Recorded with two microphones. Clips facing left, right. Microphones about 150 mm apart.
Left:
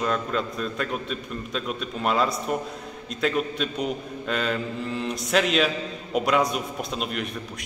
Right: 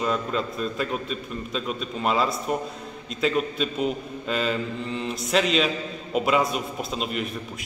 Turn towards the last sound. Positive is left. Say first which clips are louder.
# right 1 dB
turn(degrees=0)  # may be behind; listen again after turning